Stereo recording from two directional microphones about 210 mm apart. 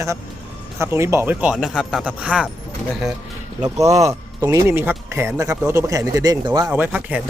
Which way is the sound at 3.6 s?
15° right (ahead or behind).